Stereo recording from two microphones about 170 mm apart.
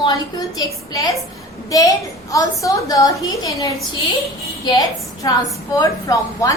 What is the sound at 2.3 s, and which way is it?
A woman's voice, 20° left (ahead or behind).